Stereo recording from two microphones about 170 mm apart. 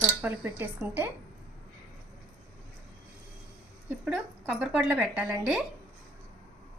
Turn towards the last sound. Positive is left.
turn(degrees=-10)  # may be behind; listen again after turning